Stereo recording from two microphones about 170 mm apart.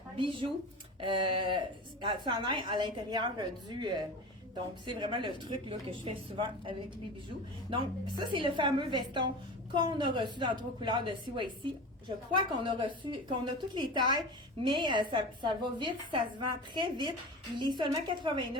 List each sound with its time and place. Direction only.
0.2 s a woman's voice: 30° right (ahead or behind)